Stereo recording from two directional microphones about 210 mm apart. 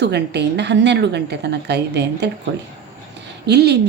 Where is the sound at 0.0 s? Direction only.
55° right (ahead or behind).